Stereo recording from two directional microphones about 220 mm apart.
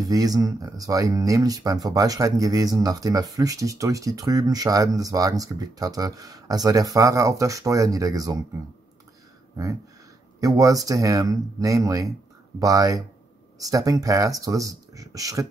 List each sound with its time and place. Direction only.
0.0 s speech: 15° right (ahead or behind)
10.4 s speech: 15° right (ahead or behind)